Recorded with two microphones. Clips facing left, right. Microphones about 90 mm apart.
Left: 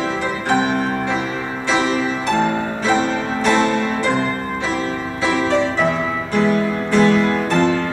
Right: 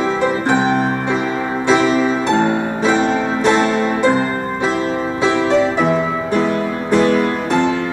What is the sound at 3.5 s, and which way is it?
Music, 20° right (ahead or behind).